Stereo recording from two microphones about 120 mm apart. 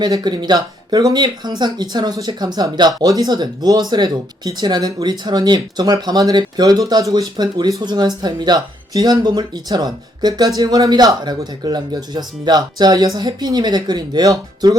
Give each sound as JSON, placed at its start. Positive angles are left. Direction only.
{"t": 0.0, "sound": "speech", "side_deg": -35}